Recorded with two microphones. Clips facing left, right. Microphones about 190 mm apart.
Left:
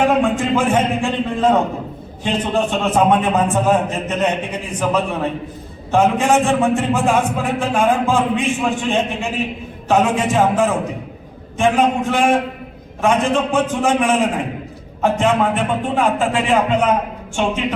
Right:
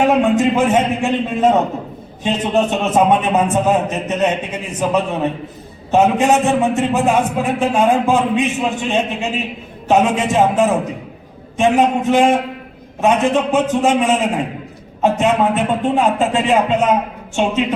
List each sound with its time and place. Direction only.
0.0 s a man's voice: 20° right (ahead or behind)